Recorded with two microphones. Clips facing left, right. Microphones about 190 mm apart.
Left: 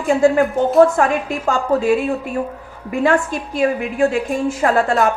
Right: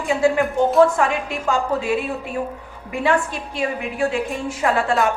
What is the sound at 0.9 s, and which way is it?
A woman's voice, 45° left (ahead or behind).